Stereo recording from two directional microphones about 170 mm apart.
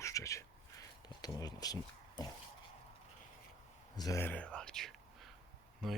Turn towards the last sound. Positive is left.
turn(degrees=0)  # may be behind; listen again after turning